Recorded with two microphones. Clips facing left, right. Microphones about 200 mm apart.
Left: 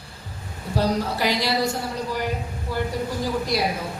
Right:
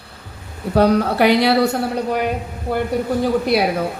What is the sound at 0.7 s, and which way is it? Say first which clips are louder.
A woman's voice: right 8 dB; 60° right (ahead or behind).